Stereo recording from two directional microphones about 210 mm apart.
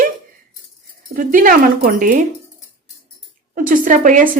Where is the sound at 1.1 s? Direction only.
40° right (ahead or behind).